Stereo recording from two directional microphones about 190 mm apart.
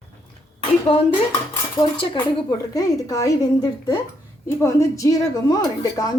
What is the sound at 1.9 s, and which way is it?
A woman's voice, 25° left (ahead or behind).